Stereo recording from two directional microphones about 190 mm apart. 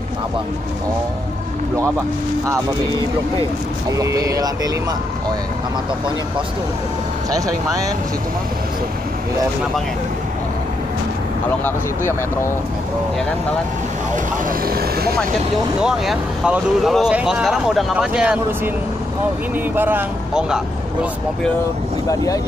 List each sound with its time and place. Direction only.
3.9 s speech: 15° right (ahead or behind)
7.2 s speech: 20° right (ahead or behind)
14.7 s speech: 55° right (ahead or behind)
15.8 s speech: 5° right (ahead or behind)
19.7 s speech: 10° right (ahead or behind)